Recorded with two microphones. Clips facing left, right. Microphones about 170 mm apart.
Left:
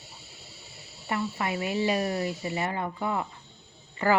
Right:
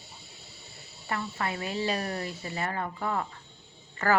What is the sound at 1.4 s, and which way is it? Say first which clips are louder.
Speech: left 3 dB; 15° left (ahead or behind).